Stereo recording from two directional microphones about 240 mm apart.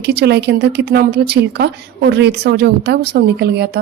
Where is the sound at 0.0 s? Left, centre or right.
Right.